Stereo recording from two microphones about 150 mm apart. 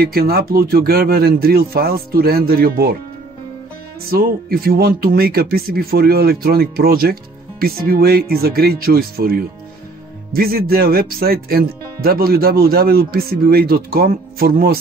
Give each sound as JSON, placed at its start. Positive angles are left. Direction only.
{"t": 0.0, "sound": "speech", "side_deg": -85}
{"t": 4.1, "sound": "speech", "side_deg": -85}